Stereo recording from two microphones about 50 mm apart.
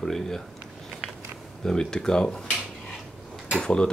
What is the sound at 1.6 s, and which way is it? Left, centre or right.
Speech, centre.